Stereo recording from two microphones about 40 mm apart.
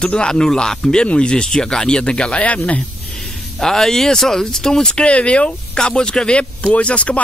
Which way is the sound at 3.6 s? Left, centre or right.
Centre.